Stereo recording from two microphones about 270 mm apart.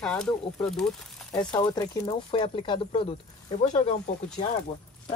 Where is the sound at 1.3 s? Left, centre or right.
Centre.